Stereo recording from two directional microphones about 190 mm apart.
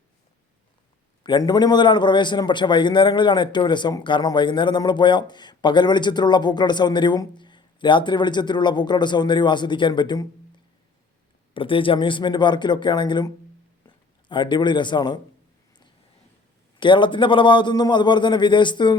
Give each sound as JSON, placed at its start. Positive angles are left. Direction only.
{"t": 1.2, "sound": "a man's voice", "side_deg": 20}
{"t": 11.5, "sound": "a man's voice", "side_deg": 25}
{"t": 16.8, "sound": "a man's voice", "side_deg": 25}